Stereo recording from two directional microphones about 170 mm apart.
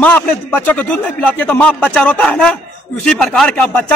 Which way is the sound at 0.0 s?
10° left (ahead or behind).